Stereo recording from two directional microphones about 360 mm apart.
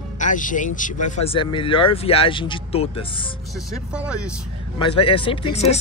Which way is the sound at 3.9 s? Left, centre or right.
Centre.